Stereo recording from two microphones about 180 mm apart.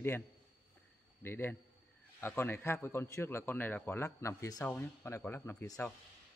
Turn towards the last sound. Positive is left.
turn(degrees=15)  # may be behind; listen again after turning